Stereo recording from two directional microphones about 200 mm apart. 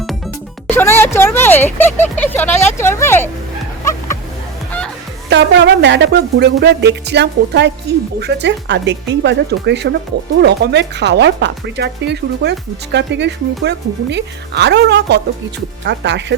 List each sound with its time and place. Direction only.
0.7 s a sound: 10° left (ahead or behind)
2.1 s speech: 10° left (ahead or behind)
5.3 s speech: 60° right (ahead or behind)